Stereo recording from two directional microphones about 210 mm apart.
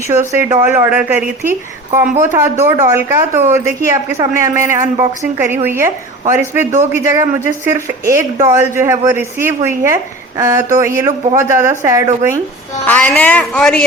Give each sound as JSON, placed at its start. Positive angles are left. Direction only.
{"t": 0.1, "sound": "a woman's voice", "side_deg": -10}
{"t": 12.8, "sound": "a woman's voice", "side_deg": 10}